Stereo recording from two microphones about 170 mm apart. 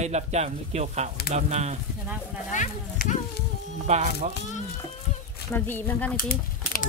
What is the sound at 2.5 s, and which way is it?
Speech, 45° left (ahead or behind).